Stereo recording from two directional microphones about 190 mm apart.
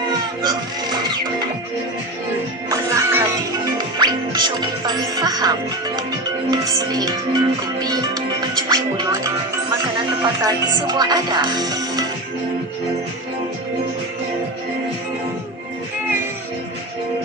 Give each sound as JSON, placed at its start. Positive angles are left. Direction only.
{"t": 0.4, "sound": "speech", "side_deg": -25}
{"t": 2.6, "sound": "music", "side_deg": -15}
{"t": 3.8, "sound": "speech", "side_deg": -20}
{"t": 10.4, "sound": "speech", "side_deg": -20}